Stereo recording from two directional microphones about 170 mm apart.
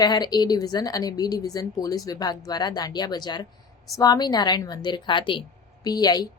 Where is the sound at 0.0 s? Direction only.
25° left (ahead or behind).